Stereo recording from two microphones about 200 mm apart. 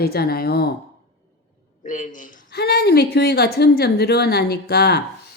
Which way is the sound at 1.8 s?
40° left (ahead or behind).